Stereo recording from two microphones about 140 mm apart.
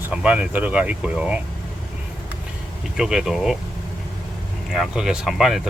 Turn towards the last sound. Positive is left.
turn(degrees=0)  # may be behind; listen again after turning